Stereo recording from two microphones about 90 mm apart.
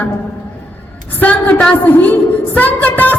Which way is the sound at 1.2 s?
15° left (ahead or behind).